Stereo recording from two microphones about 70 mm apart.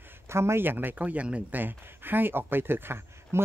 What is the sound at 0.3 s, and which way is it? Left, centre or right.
Speech, right.